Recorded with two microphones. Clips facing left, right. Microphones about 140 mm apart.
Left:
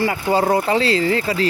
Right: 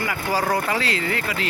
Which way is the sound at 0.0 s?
25° left (ahead or behind).